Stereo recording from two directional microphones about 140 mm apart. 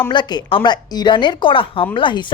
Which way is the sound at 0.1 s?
35° left (ahead or behind).